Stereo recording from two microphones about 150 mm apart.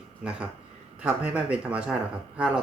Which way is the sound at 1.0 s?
10° right (ahead or behind).